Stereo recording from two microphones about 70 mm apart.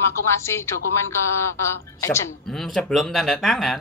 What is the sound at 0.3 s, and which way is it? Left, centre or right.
A woman's voice, left.